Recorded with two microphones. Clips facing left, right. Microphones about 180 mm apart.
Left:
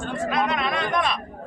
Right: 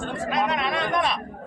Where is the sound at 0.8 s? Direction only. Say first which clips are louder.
Even; 25° right (ahead or behind).